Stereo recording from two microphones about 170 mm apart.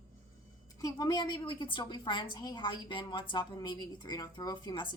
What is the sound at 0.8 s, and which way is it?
A woman's voice, 20° left (ahead or behind).